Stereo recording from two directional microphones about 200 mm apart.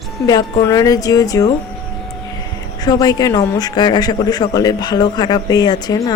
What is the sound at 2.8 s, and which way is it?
Speech, 20° left (ahead or behind).